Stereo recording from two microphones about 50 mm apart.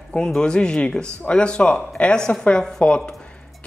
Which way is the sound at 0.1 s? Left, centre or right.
Centre.